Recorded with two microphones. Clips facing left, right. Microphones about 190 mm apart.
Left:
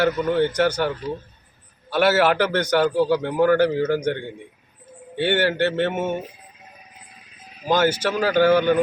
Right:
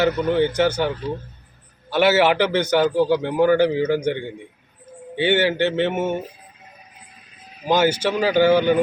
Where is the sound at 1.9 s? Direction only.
5° right (ahead or behind).